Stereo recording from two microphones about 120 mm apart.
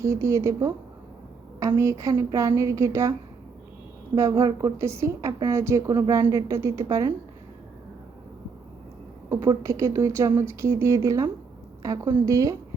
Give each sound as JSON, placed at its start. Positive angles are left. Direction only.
{"t": 0.0, "sound": "a woman's voice", "side_deg": -25}
{"t": 9.3, "sound": "a woman's voice", "side_deg": -25}